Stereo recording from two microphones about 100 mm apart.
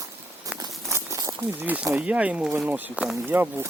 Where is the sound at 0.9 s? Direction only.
30° right (ahead or behind).